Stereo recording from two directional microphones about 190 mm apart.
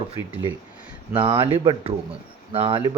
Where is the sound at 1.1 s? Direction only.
25° right (ahead or behind).